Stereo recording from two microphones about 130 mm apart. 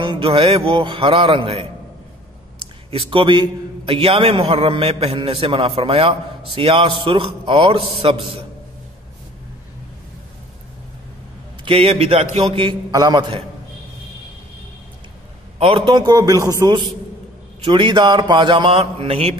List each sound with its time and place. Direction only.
0.0 s a man's voice: 40° right (ahead or behind)
2.9 s a man's voice: 45° right (ahead or behind)
11.6 s a man's voice: 45° right (ahead or behind)
15.6 s a man's voice: 40° right (ahead or behind)